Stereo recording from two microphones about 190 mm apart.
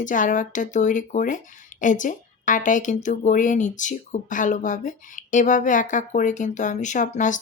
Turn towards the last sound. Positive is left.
turn(degrees=40)  # may be behind; listen again after turning